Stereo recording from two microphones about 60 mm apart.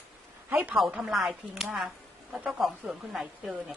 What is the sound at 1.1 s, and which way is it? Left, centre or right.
A woman's voice, centre.